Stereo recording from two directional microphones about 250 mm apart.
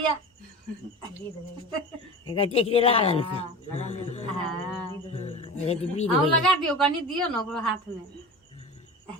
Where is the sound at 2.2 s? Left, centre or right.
Left.